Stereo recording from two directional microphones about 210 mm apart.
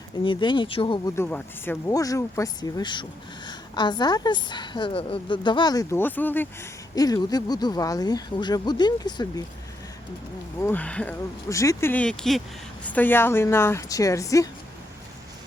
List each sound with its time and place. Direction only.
0.3 s speech: 20° left (ahead or behind)
1.1 s speech: 10° left (ahead or behind)
10.6 s speech: 10° left (ahead or behind)